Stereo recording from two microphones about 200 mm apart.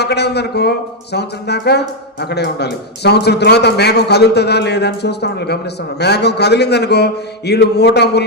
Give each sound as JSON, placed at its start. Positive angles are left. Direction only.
{"t": 0.0, "sound": "a man's voice", "side_deg": 55}